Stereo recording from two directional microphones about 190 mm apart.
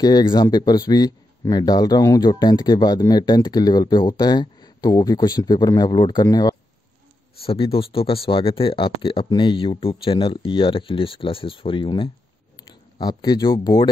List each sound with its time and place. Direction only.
0.0 s speech: 25° left (ahead or behind)